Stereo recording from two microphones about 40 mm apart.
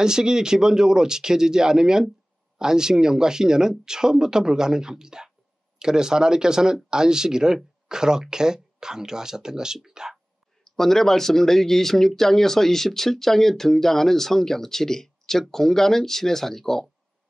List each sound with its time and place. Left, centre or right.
0.0 s speech: centre
9.9 s whispering: centre
10.6 s speech: centre